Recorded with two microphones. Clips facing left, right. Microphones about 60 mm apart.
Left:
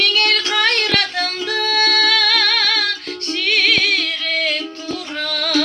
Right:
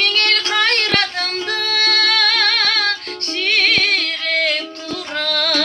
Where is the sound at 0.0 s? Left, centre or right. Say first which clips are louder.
Left 1 dB; right.